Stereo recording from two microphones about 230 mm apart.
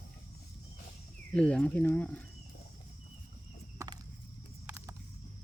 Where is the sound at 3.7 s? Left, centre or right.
Centre.